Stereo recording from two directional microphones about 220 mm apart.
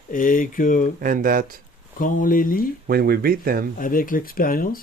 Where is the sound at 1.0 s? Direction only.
40° right (ahead or behind).